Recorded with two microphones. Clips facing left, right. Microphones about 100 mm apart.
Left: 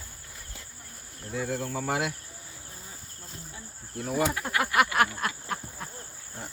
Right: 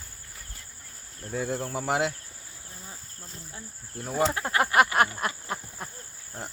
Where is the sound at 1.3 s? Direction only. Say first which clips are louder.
Right 1 dB; 40° right (ahead or behind).